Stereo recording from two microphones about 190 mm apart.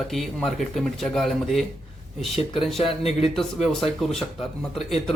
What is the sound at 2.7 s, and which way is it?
Speech, 30° left (ahead or behind).